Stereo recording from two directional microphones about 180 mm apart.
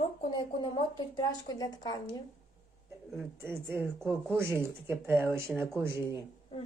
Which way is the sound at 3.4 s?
15° right (ahead or behind).